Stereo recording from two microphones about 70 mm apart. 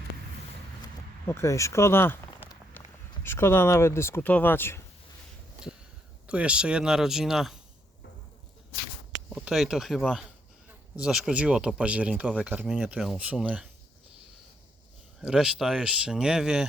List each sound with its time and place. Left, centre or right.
1.3 s speech: left
4.3 s speech: left
6.2 s speech: centre
9.5 s speech: centre
10.9 s speech: centre
15.2 s speech: centre